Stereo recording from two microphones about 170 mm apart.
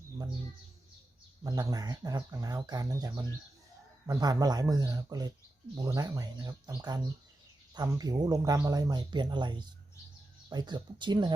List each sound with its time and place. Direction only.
1.5 s speech: 20° right (ahead or behind)